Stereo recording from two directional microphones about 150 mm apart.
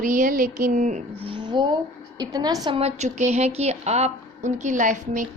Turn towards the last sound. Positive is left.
turn(degrees=-55)  # may be behind; listen again after turning